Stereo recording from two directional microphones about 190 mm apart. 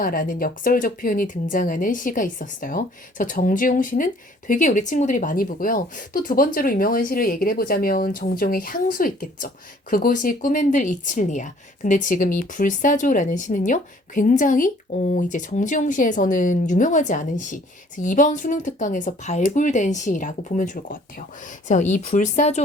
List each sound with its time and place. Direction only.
0.0 s speech: 45° left (ahead or behind)